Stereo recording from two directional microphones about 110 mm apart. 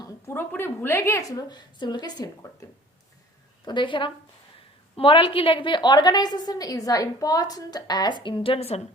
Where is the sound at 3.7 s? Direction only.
45° left (ahead or behind); by 8.8 s 70° left (ahead or behind).